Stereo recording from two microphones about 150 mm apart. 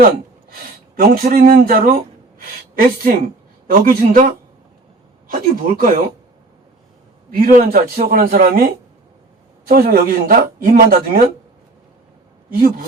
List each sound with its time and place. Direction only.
0.9 s speech: 75° right (ahead or behind)
5.3 s speech: 65° right (ahead or behind)
7.3 s speech: 70° right (ahead or behind)
9.6 s speech: 85° right